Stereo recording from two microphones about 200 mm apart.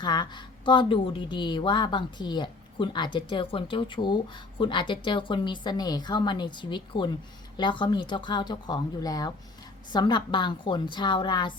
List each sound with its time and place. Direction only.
0.0 s a woman's voice: 20° left (ahead or behind)